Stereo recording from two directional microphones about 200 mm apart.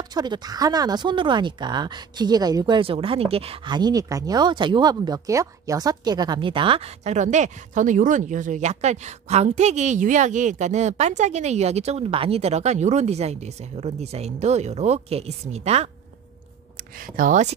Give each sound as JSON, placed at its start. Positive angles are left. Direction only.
{"t": 0.1, "sound": "speech", "side_deg": -20}
{"t": 17.0, "sound": "speech", "side_deg": -40}